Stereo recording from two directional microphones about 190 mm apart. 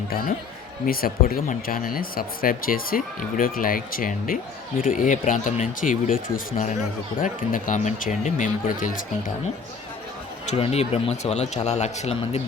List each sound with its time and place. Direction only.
0.1 s speech: 50° left (ahead or behind)
10.4 s a man's voice: 35° left (ahead or behind)